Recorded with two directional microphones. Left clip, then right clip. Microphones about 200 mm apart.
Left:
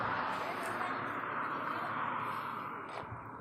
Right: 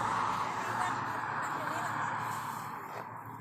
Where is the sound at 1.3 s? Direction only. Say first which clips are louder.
Right 2 dB; 35° right (ahead or behind).